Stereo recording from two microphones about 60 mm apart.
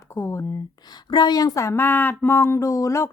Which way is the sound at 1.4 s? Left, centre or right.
Left.